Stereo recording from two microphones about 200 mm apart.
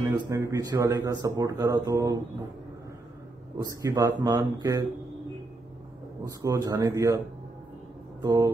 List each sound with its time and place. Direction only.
0.0 s speech: 15° right (ahead or behind)
3.8 s speech: 20° right (ahead or behind)
6.2 s speech: 15° right (ahead or behind)
8.2 s speech: 15° right (ahead or behind)